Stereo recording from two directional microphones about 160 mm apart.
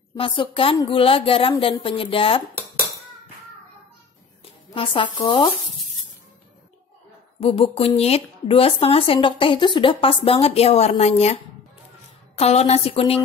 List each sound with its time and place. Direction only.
0.1 s speech: 30° left (ahead or behind)
4.7 s speech: 35° left (ahead or behind)
7.3 s speech: 35° left (ahead or behind)
12.4 s speech: 40° left (ahead or behind)